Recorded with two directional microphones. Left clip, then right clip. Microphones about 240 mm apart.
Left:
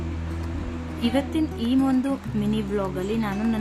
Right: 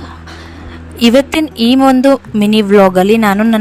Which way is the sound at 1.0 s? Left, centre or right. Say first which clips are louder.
Right 15 dB; right.